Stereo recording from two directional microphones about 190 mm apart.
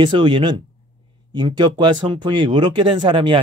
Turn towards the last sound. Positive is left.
turn(degrees=-25)  # may be behind; listen again after turning